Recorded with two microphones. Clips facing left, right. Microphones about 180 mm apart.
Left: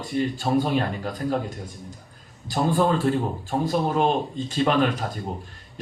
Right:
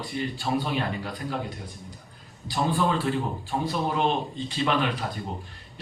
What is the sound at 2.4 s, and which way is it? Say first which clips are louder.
Speech: left 4 dB; 45° left (ahead or behind).